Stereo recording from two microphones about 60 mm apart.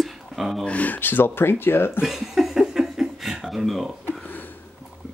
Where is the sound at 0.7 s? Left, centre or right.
Left.